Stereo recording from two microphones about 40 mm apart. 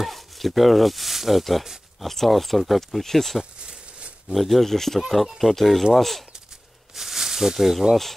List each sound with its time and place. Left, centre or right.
0.0 s speech: centre
3.5 s a sound: right
4.3 s speech: centre
7.0 s speech: centre